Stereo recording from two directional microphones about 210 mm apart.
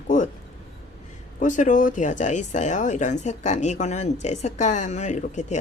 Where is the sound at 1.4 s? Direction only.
35° left (ahead or behind).